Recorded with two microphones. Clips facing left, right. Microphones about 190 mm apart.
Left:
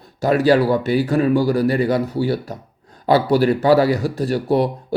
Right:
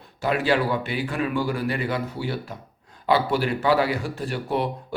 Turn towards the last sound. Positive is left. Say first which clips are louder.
# left 8 dB
turn(degrees=40)  # may be behind; listen again after turning